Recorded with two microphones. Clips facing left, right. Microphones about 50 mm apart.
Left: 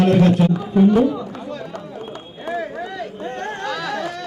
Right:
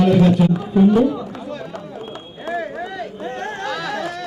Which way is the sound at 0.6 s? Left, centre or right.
Centre.